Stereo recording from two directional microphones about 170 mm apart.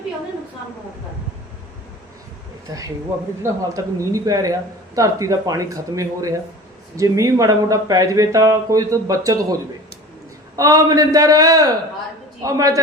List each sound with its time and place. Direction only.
2.6 s speech: 20° right (ahead or behind)
10.6 s speech: 20° right (ahead or behind)